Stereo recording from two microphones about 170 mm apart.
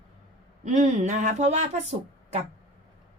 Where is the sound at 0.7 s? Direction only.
45° right (ahead or behind).